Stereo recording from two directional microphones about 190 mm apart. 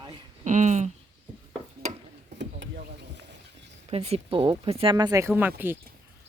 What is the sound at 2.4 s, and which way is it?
Vehicle, 65° right (ahead or behind).